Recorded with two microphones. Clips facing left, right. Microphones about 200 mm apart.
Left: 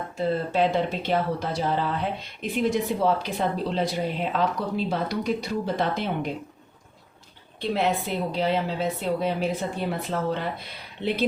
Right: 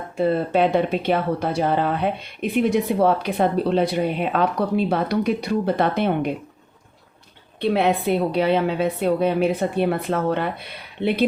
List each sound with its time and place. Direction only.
0.2 s speech: 60° right (ahead or behind)
7.6 s speech: 65° right (ahead or behind)